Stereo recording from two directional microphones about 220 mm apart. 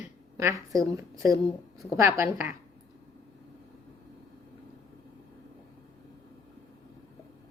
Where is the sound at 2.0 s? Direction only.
10° right (ahead or behind).